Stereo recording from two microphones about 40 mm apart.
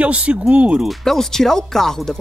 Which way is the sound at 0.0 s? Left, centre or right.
Right.